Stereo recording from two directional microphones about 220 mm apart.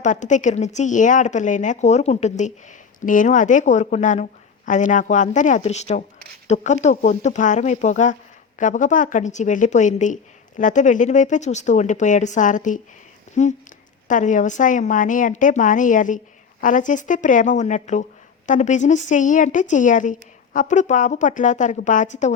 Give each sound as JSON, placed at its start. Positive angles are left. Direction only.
{"t": 0.0, "sound": "a woman's voice", "side_deg": 35}